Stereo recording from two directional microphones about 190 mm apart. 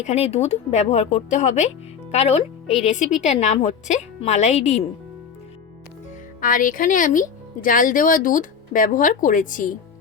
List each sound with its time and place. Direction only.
0.0 s a woman's voice: 35° left (ahead or behind)
6.4 s speech: 45° left (ahead or behind)